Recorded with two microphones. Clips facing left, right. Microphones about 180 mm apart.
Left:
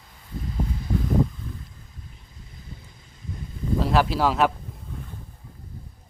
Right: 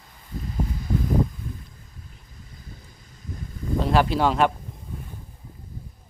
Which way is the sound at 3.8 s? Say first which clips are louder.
Right 1 dB; centre (ahead or behind).